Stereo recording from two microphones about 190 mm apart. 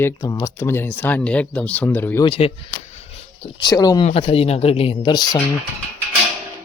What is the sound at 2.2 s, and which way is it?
Speech, 30° left (ahead or behind).